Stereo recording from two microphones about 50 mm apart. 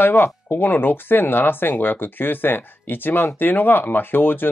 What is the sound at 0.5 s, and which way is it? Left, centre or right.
Speech, left.